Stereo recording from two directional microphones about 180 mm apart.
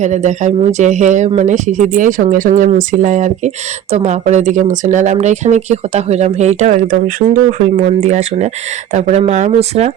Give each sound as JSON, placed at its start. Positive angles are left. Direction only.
{"t": 0.0, "sound": "speech", "side_deg": -40}